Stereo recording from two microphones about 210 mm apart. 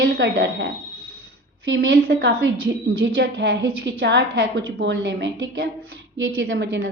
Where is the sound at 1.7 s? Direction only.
55° right (ahead or behind).